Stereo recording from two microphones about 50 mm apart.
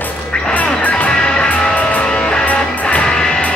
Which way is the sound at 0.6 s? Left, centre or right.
Left.